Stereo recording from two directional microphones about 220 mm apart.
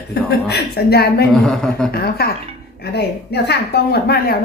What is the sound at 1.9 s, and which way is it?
Speech, 45° left (ahead or behind).